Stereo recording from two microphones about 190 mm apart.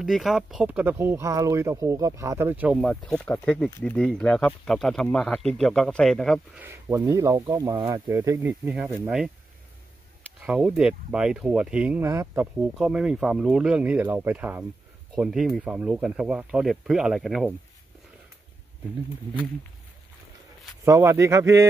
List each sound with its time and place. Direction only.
0.0 s speech: centre (ahead or behind)
6.6 s speech: 15° right (ahead or behind)
10.4 s speech: 5° right (ahead or behind)
20.8 s speech: 15° right (ahead or behind)